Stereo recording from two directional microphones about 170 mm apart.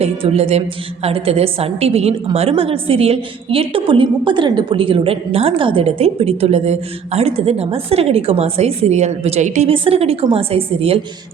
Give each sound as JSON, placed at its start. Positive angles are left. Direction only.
{"t": 0.0, "sound": "a woman's voice", "side_deg": -35}